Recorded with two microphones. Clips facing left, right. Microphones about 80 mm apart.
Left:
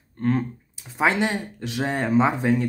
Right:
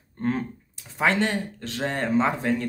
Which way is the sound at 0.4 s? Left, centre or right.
Centre.